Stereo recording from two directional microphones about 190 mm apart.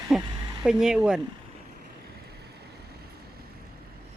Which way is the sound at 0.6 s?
5° right (ahead or behind).